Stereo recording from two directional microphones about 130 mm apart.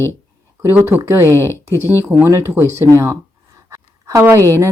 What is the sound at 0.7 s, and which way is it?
Speech, 15° right (ahead or behind).